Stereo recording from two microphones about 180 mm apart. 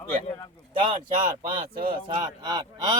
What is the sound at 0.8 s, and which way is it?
Speech, 30° right (ahead or behind).